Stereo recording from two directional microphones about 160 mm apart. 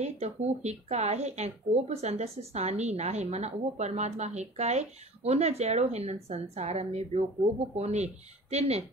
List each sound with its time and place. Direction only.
0.0 s speech: 45° right (ahead or behind)